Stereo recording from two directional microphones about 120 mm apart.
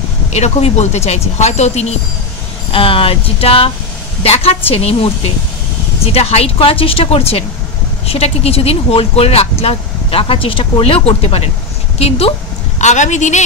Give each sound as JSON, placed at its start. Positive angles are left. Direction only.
{"t": 0.3, "sound": "speech", "side_deg": 65}
{"t": 2.7, "sound": "speech", "side_deg": 50}
{"t": 6.1, "sound": "a woman's voice", "side_deg": 55}